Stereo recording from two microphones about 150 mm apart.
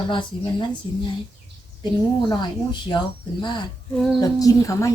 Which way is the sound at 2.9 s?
30° left (ahead or behind).